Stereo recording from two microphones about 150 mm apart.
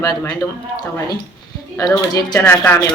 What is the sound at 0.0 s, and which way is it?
Speech, 25° left (ahead or behind).